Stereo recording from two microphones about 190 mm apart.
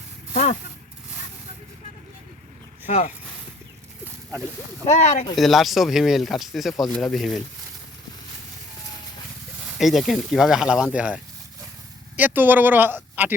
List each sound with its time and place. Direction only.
4.9 s speech: 35° left (ahead or behind)
5.4 s speech: centre (ahead or behind)
9.7 s speech: centre (ahead or behind)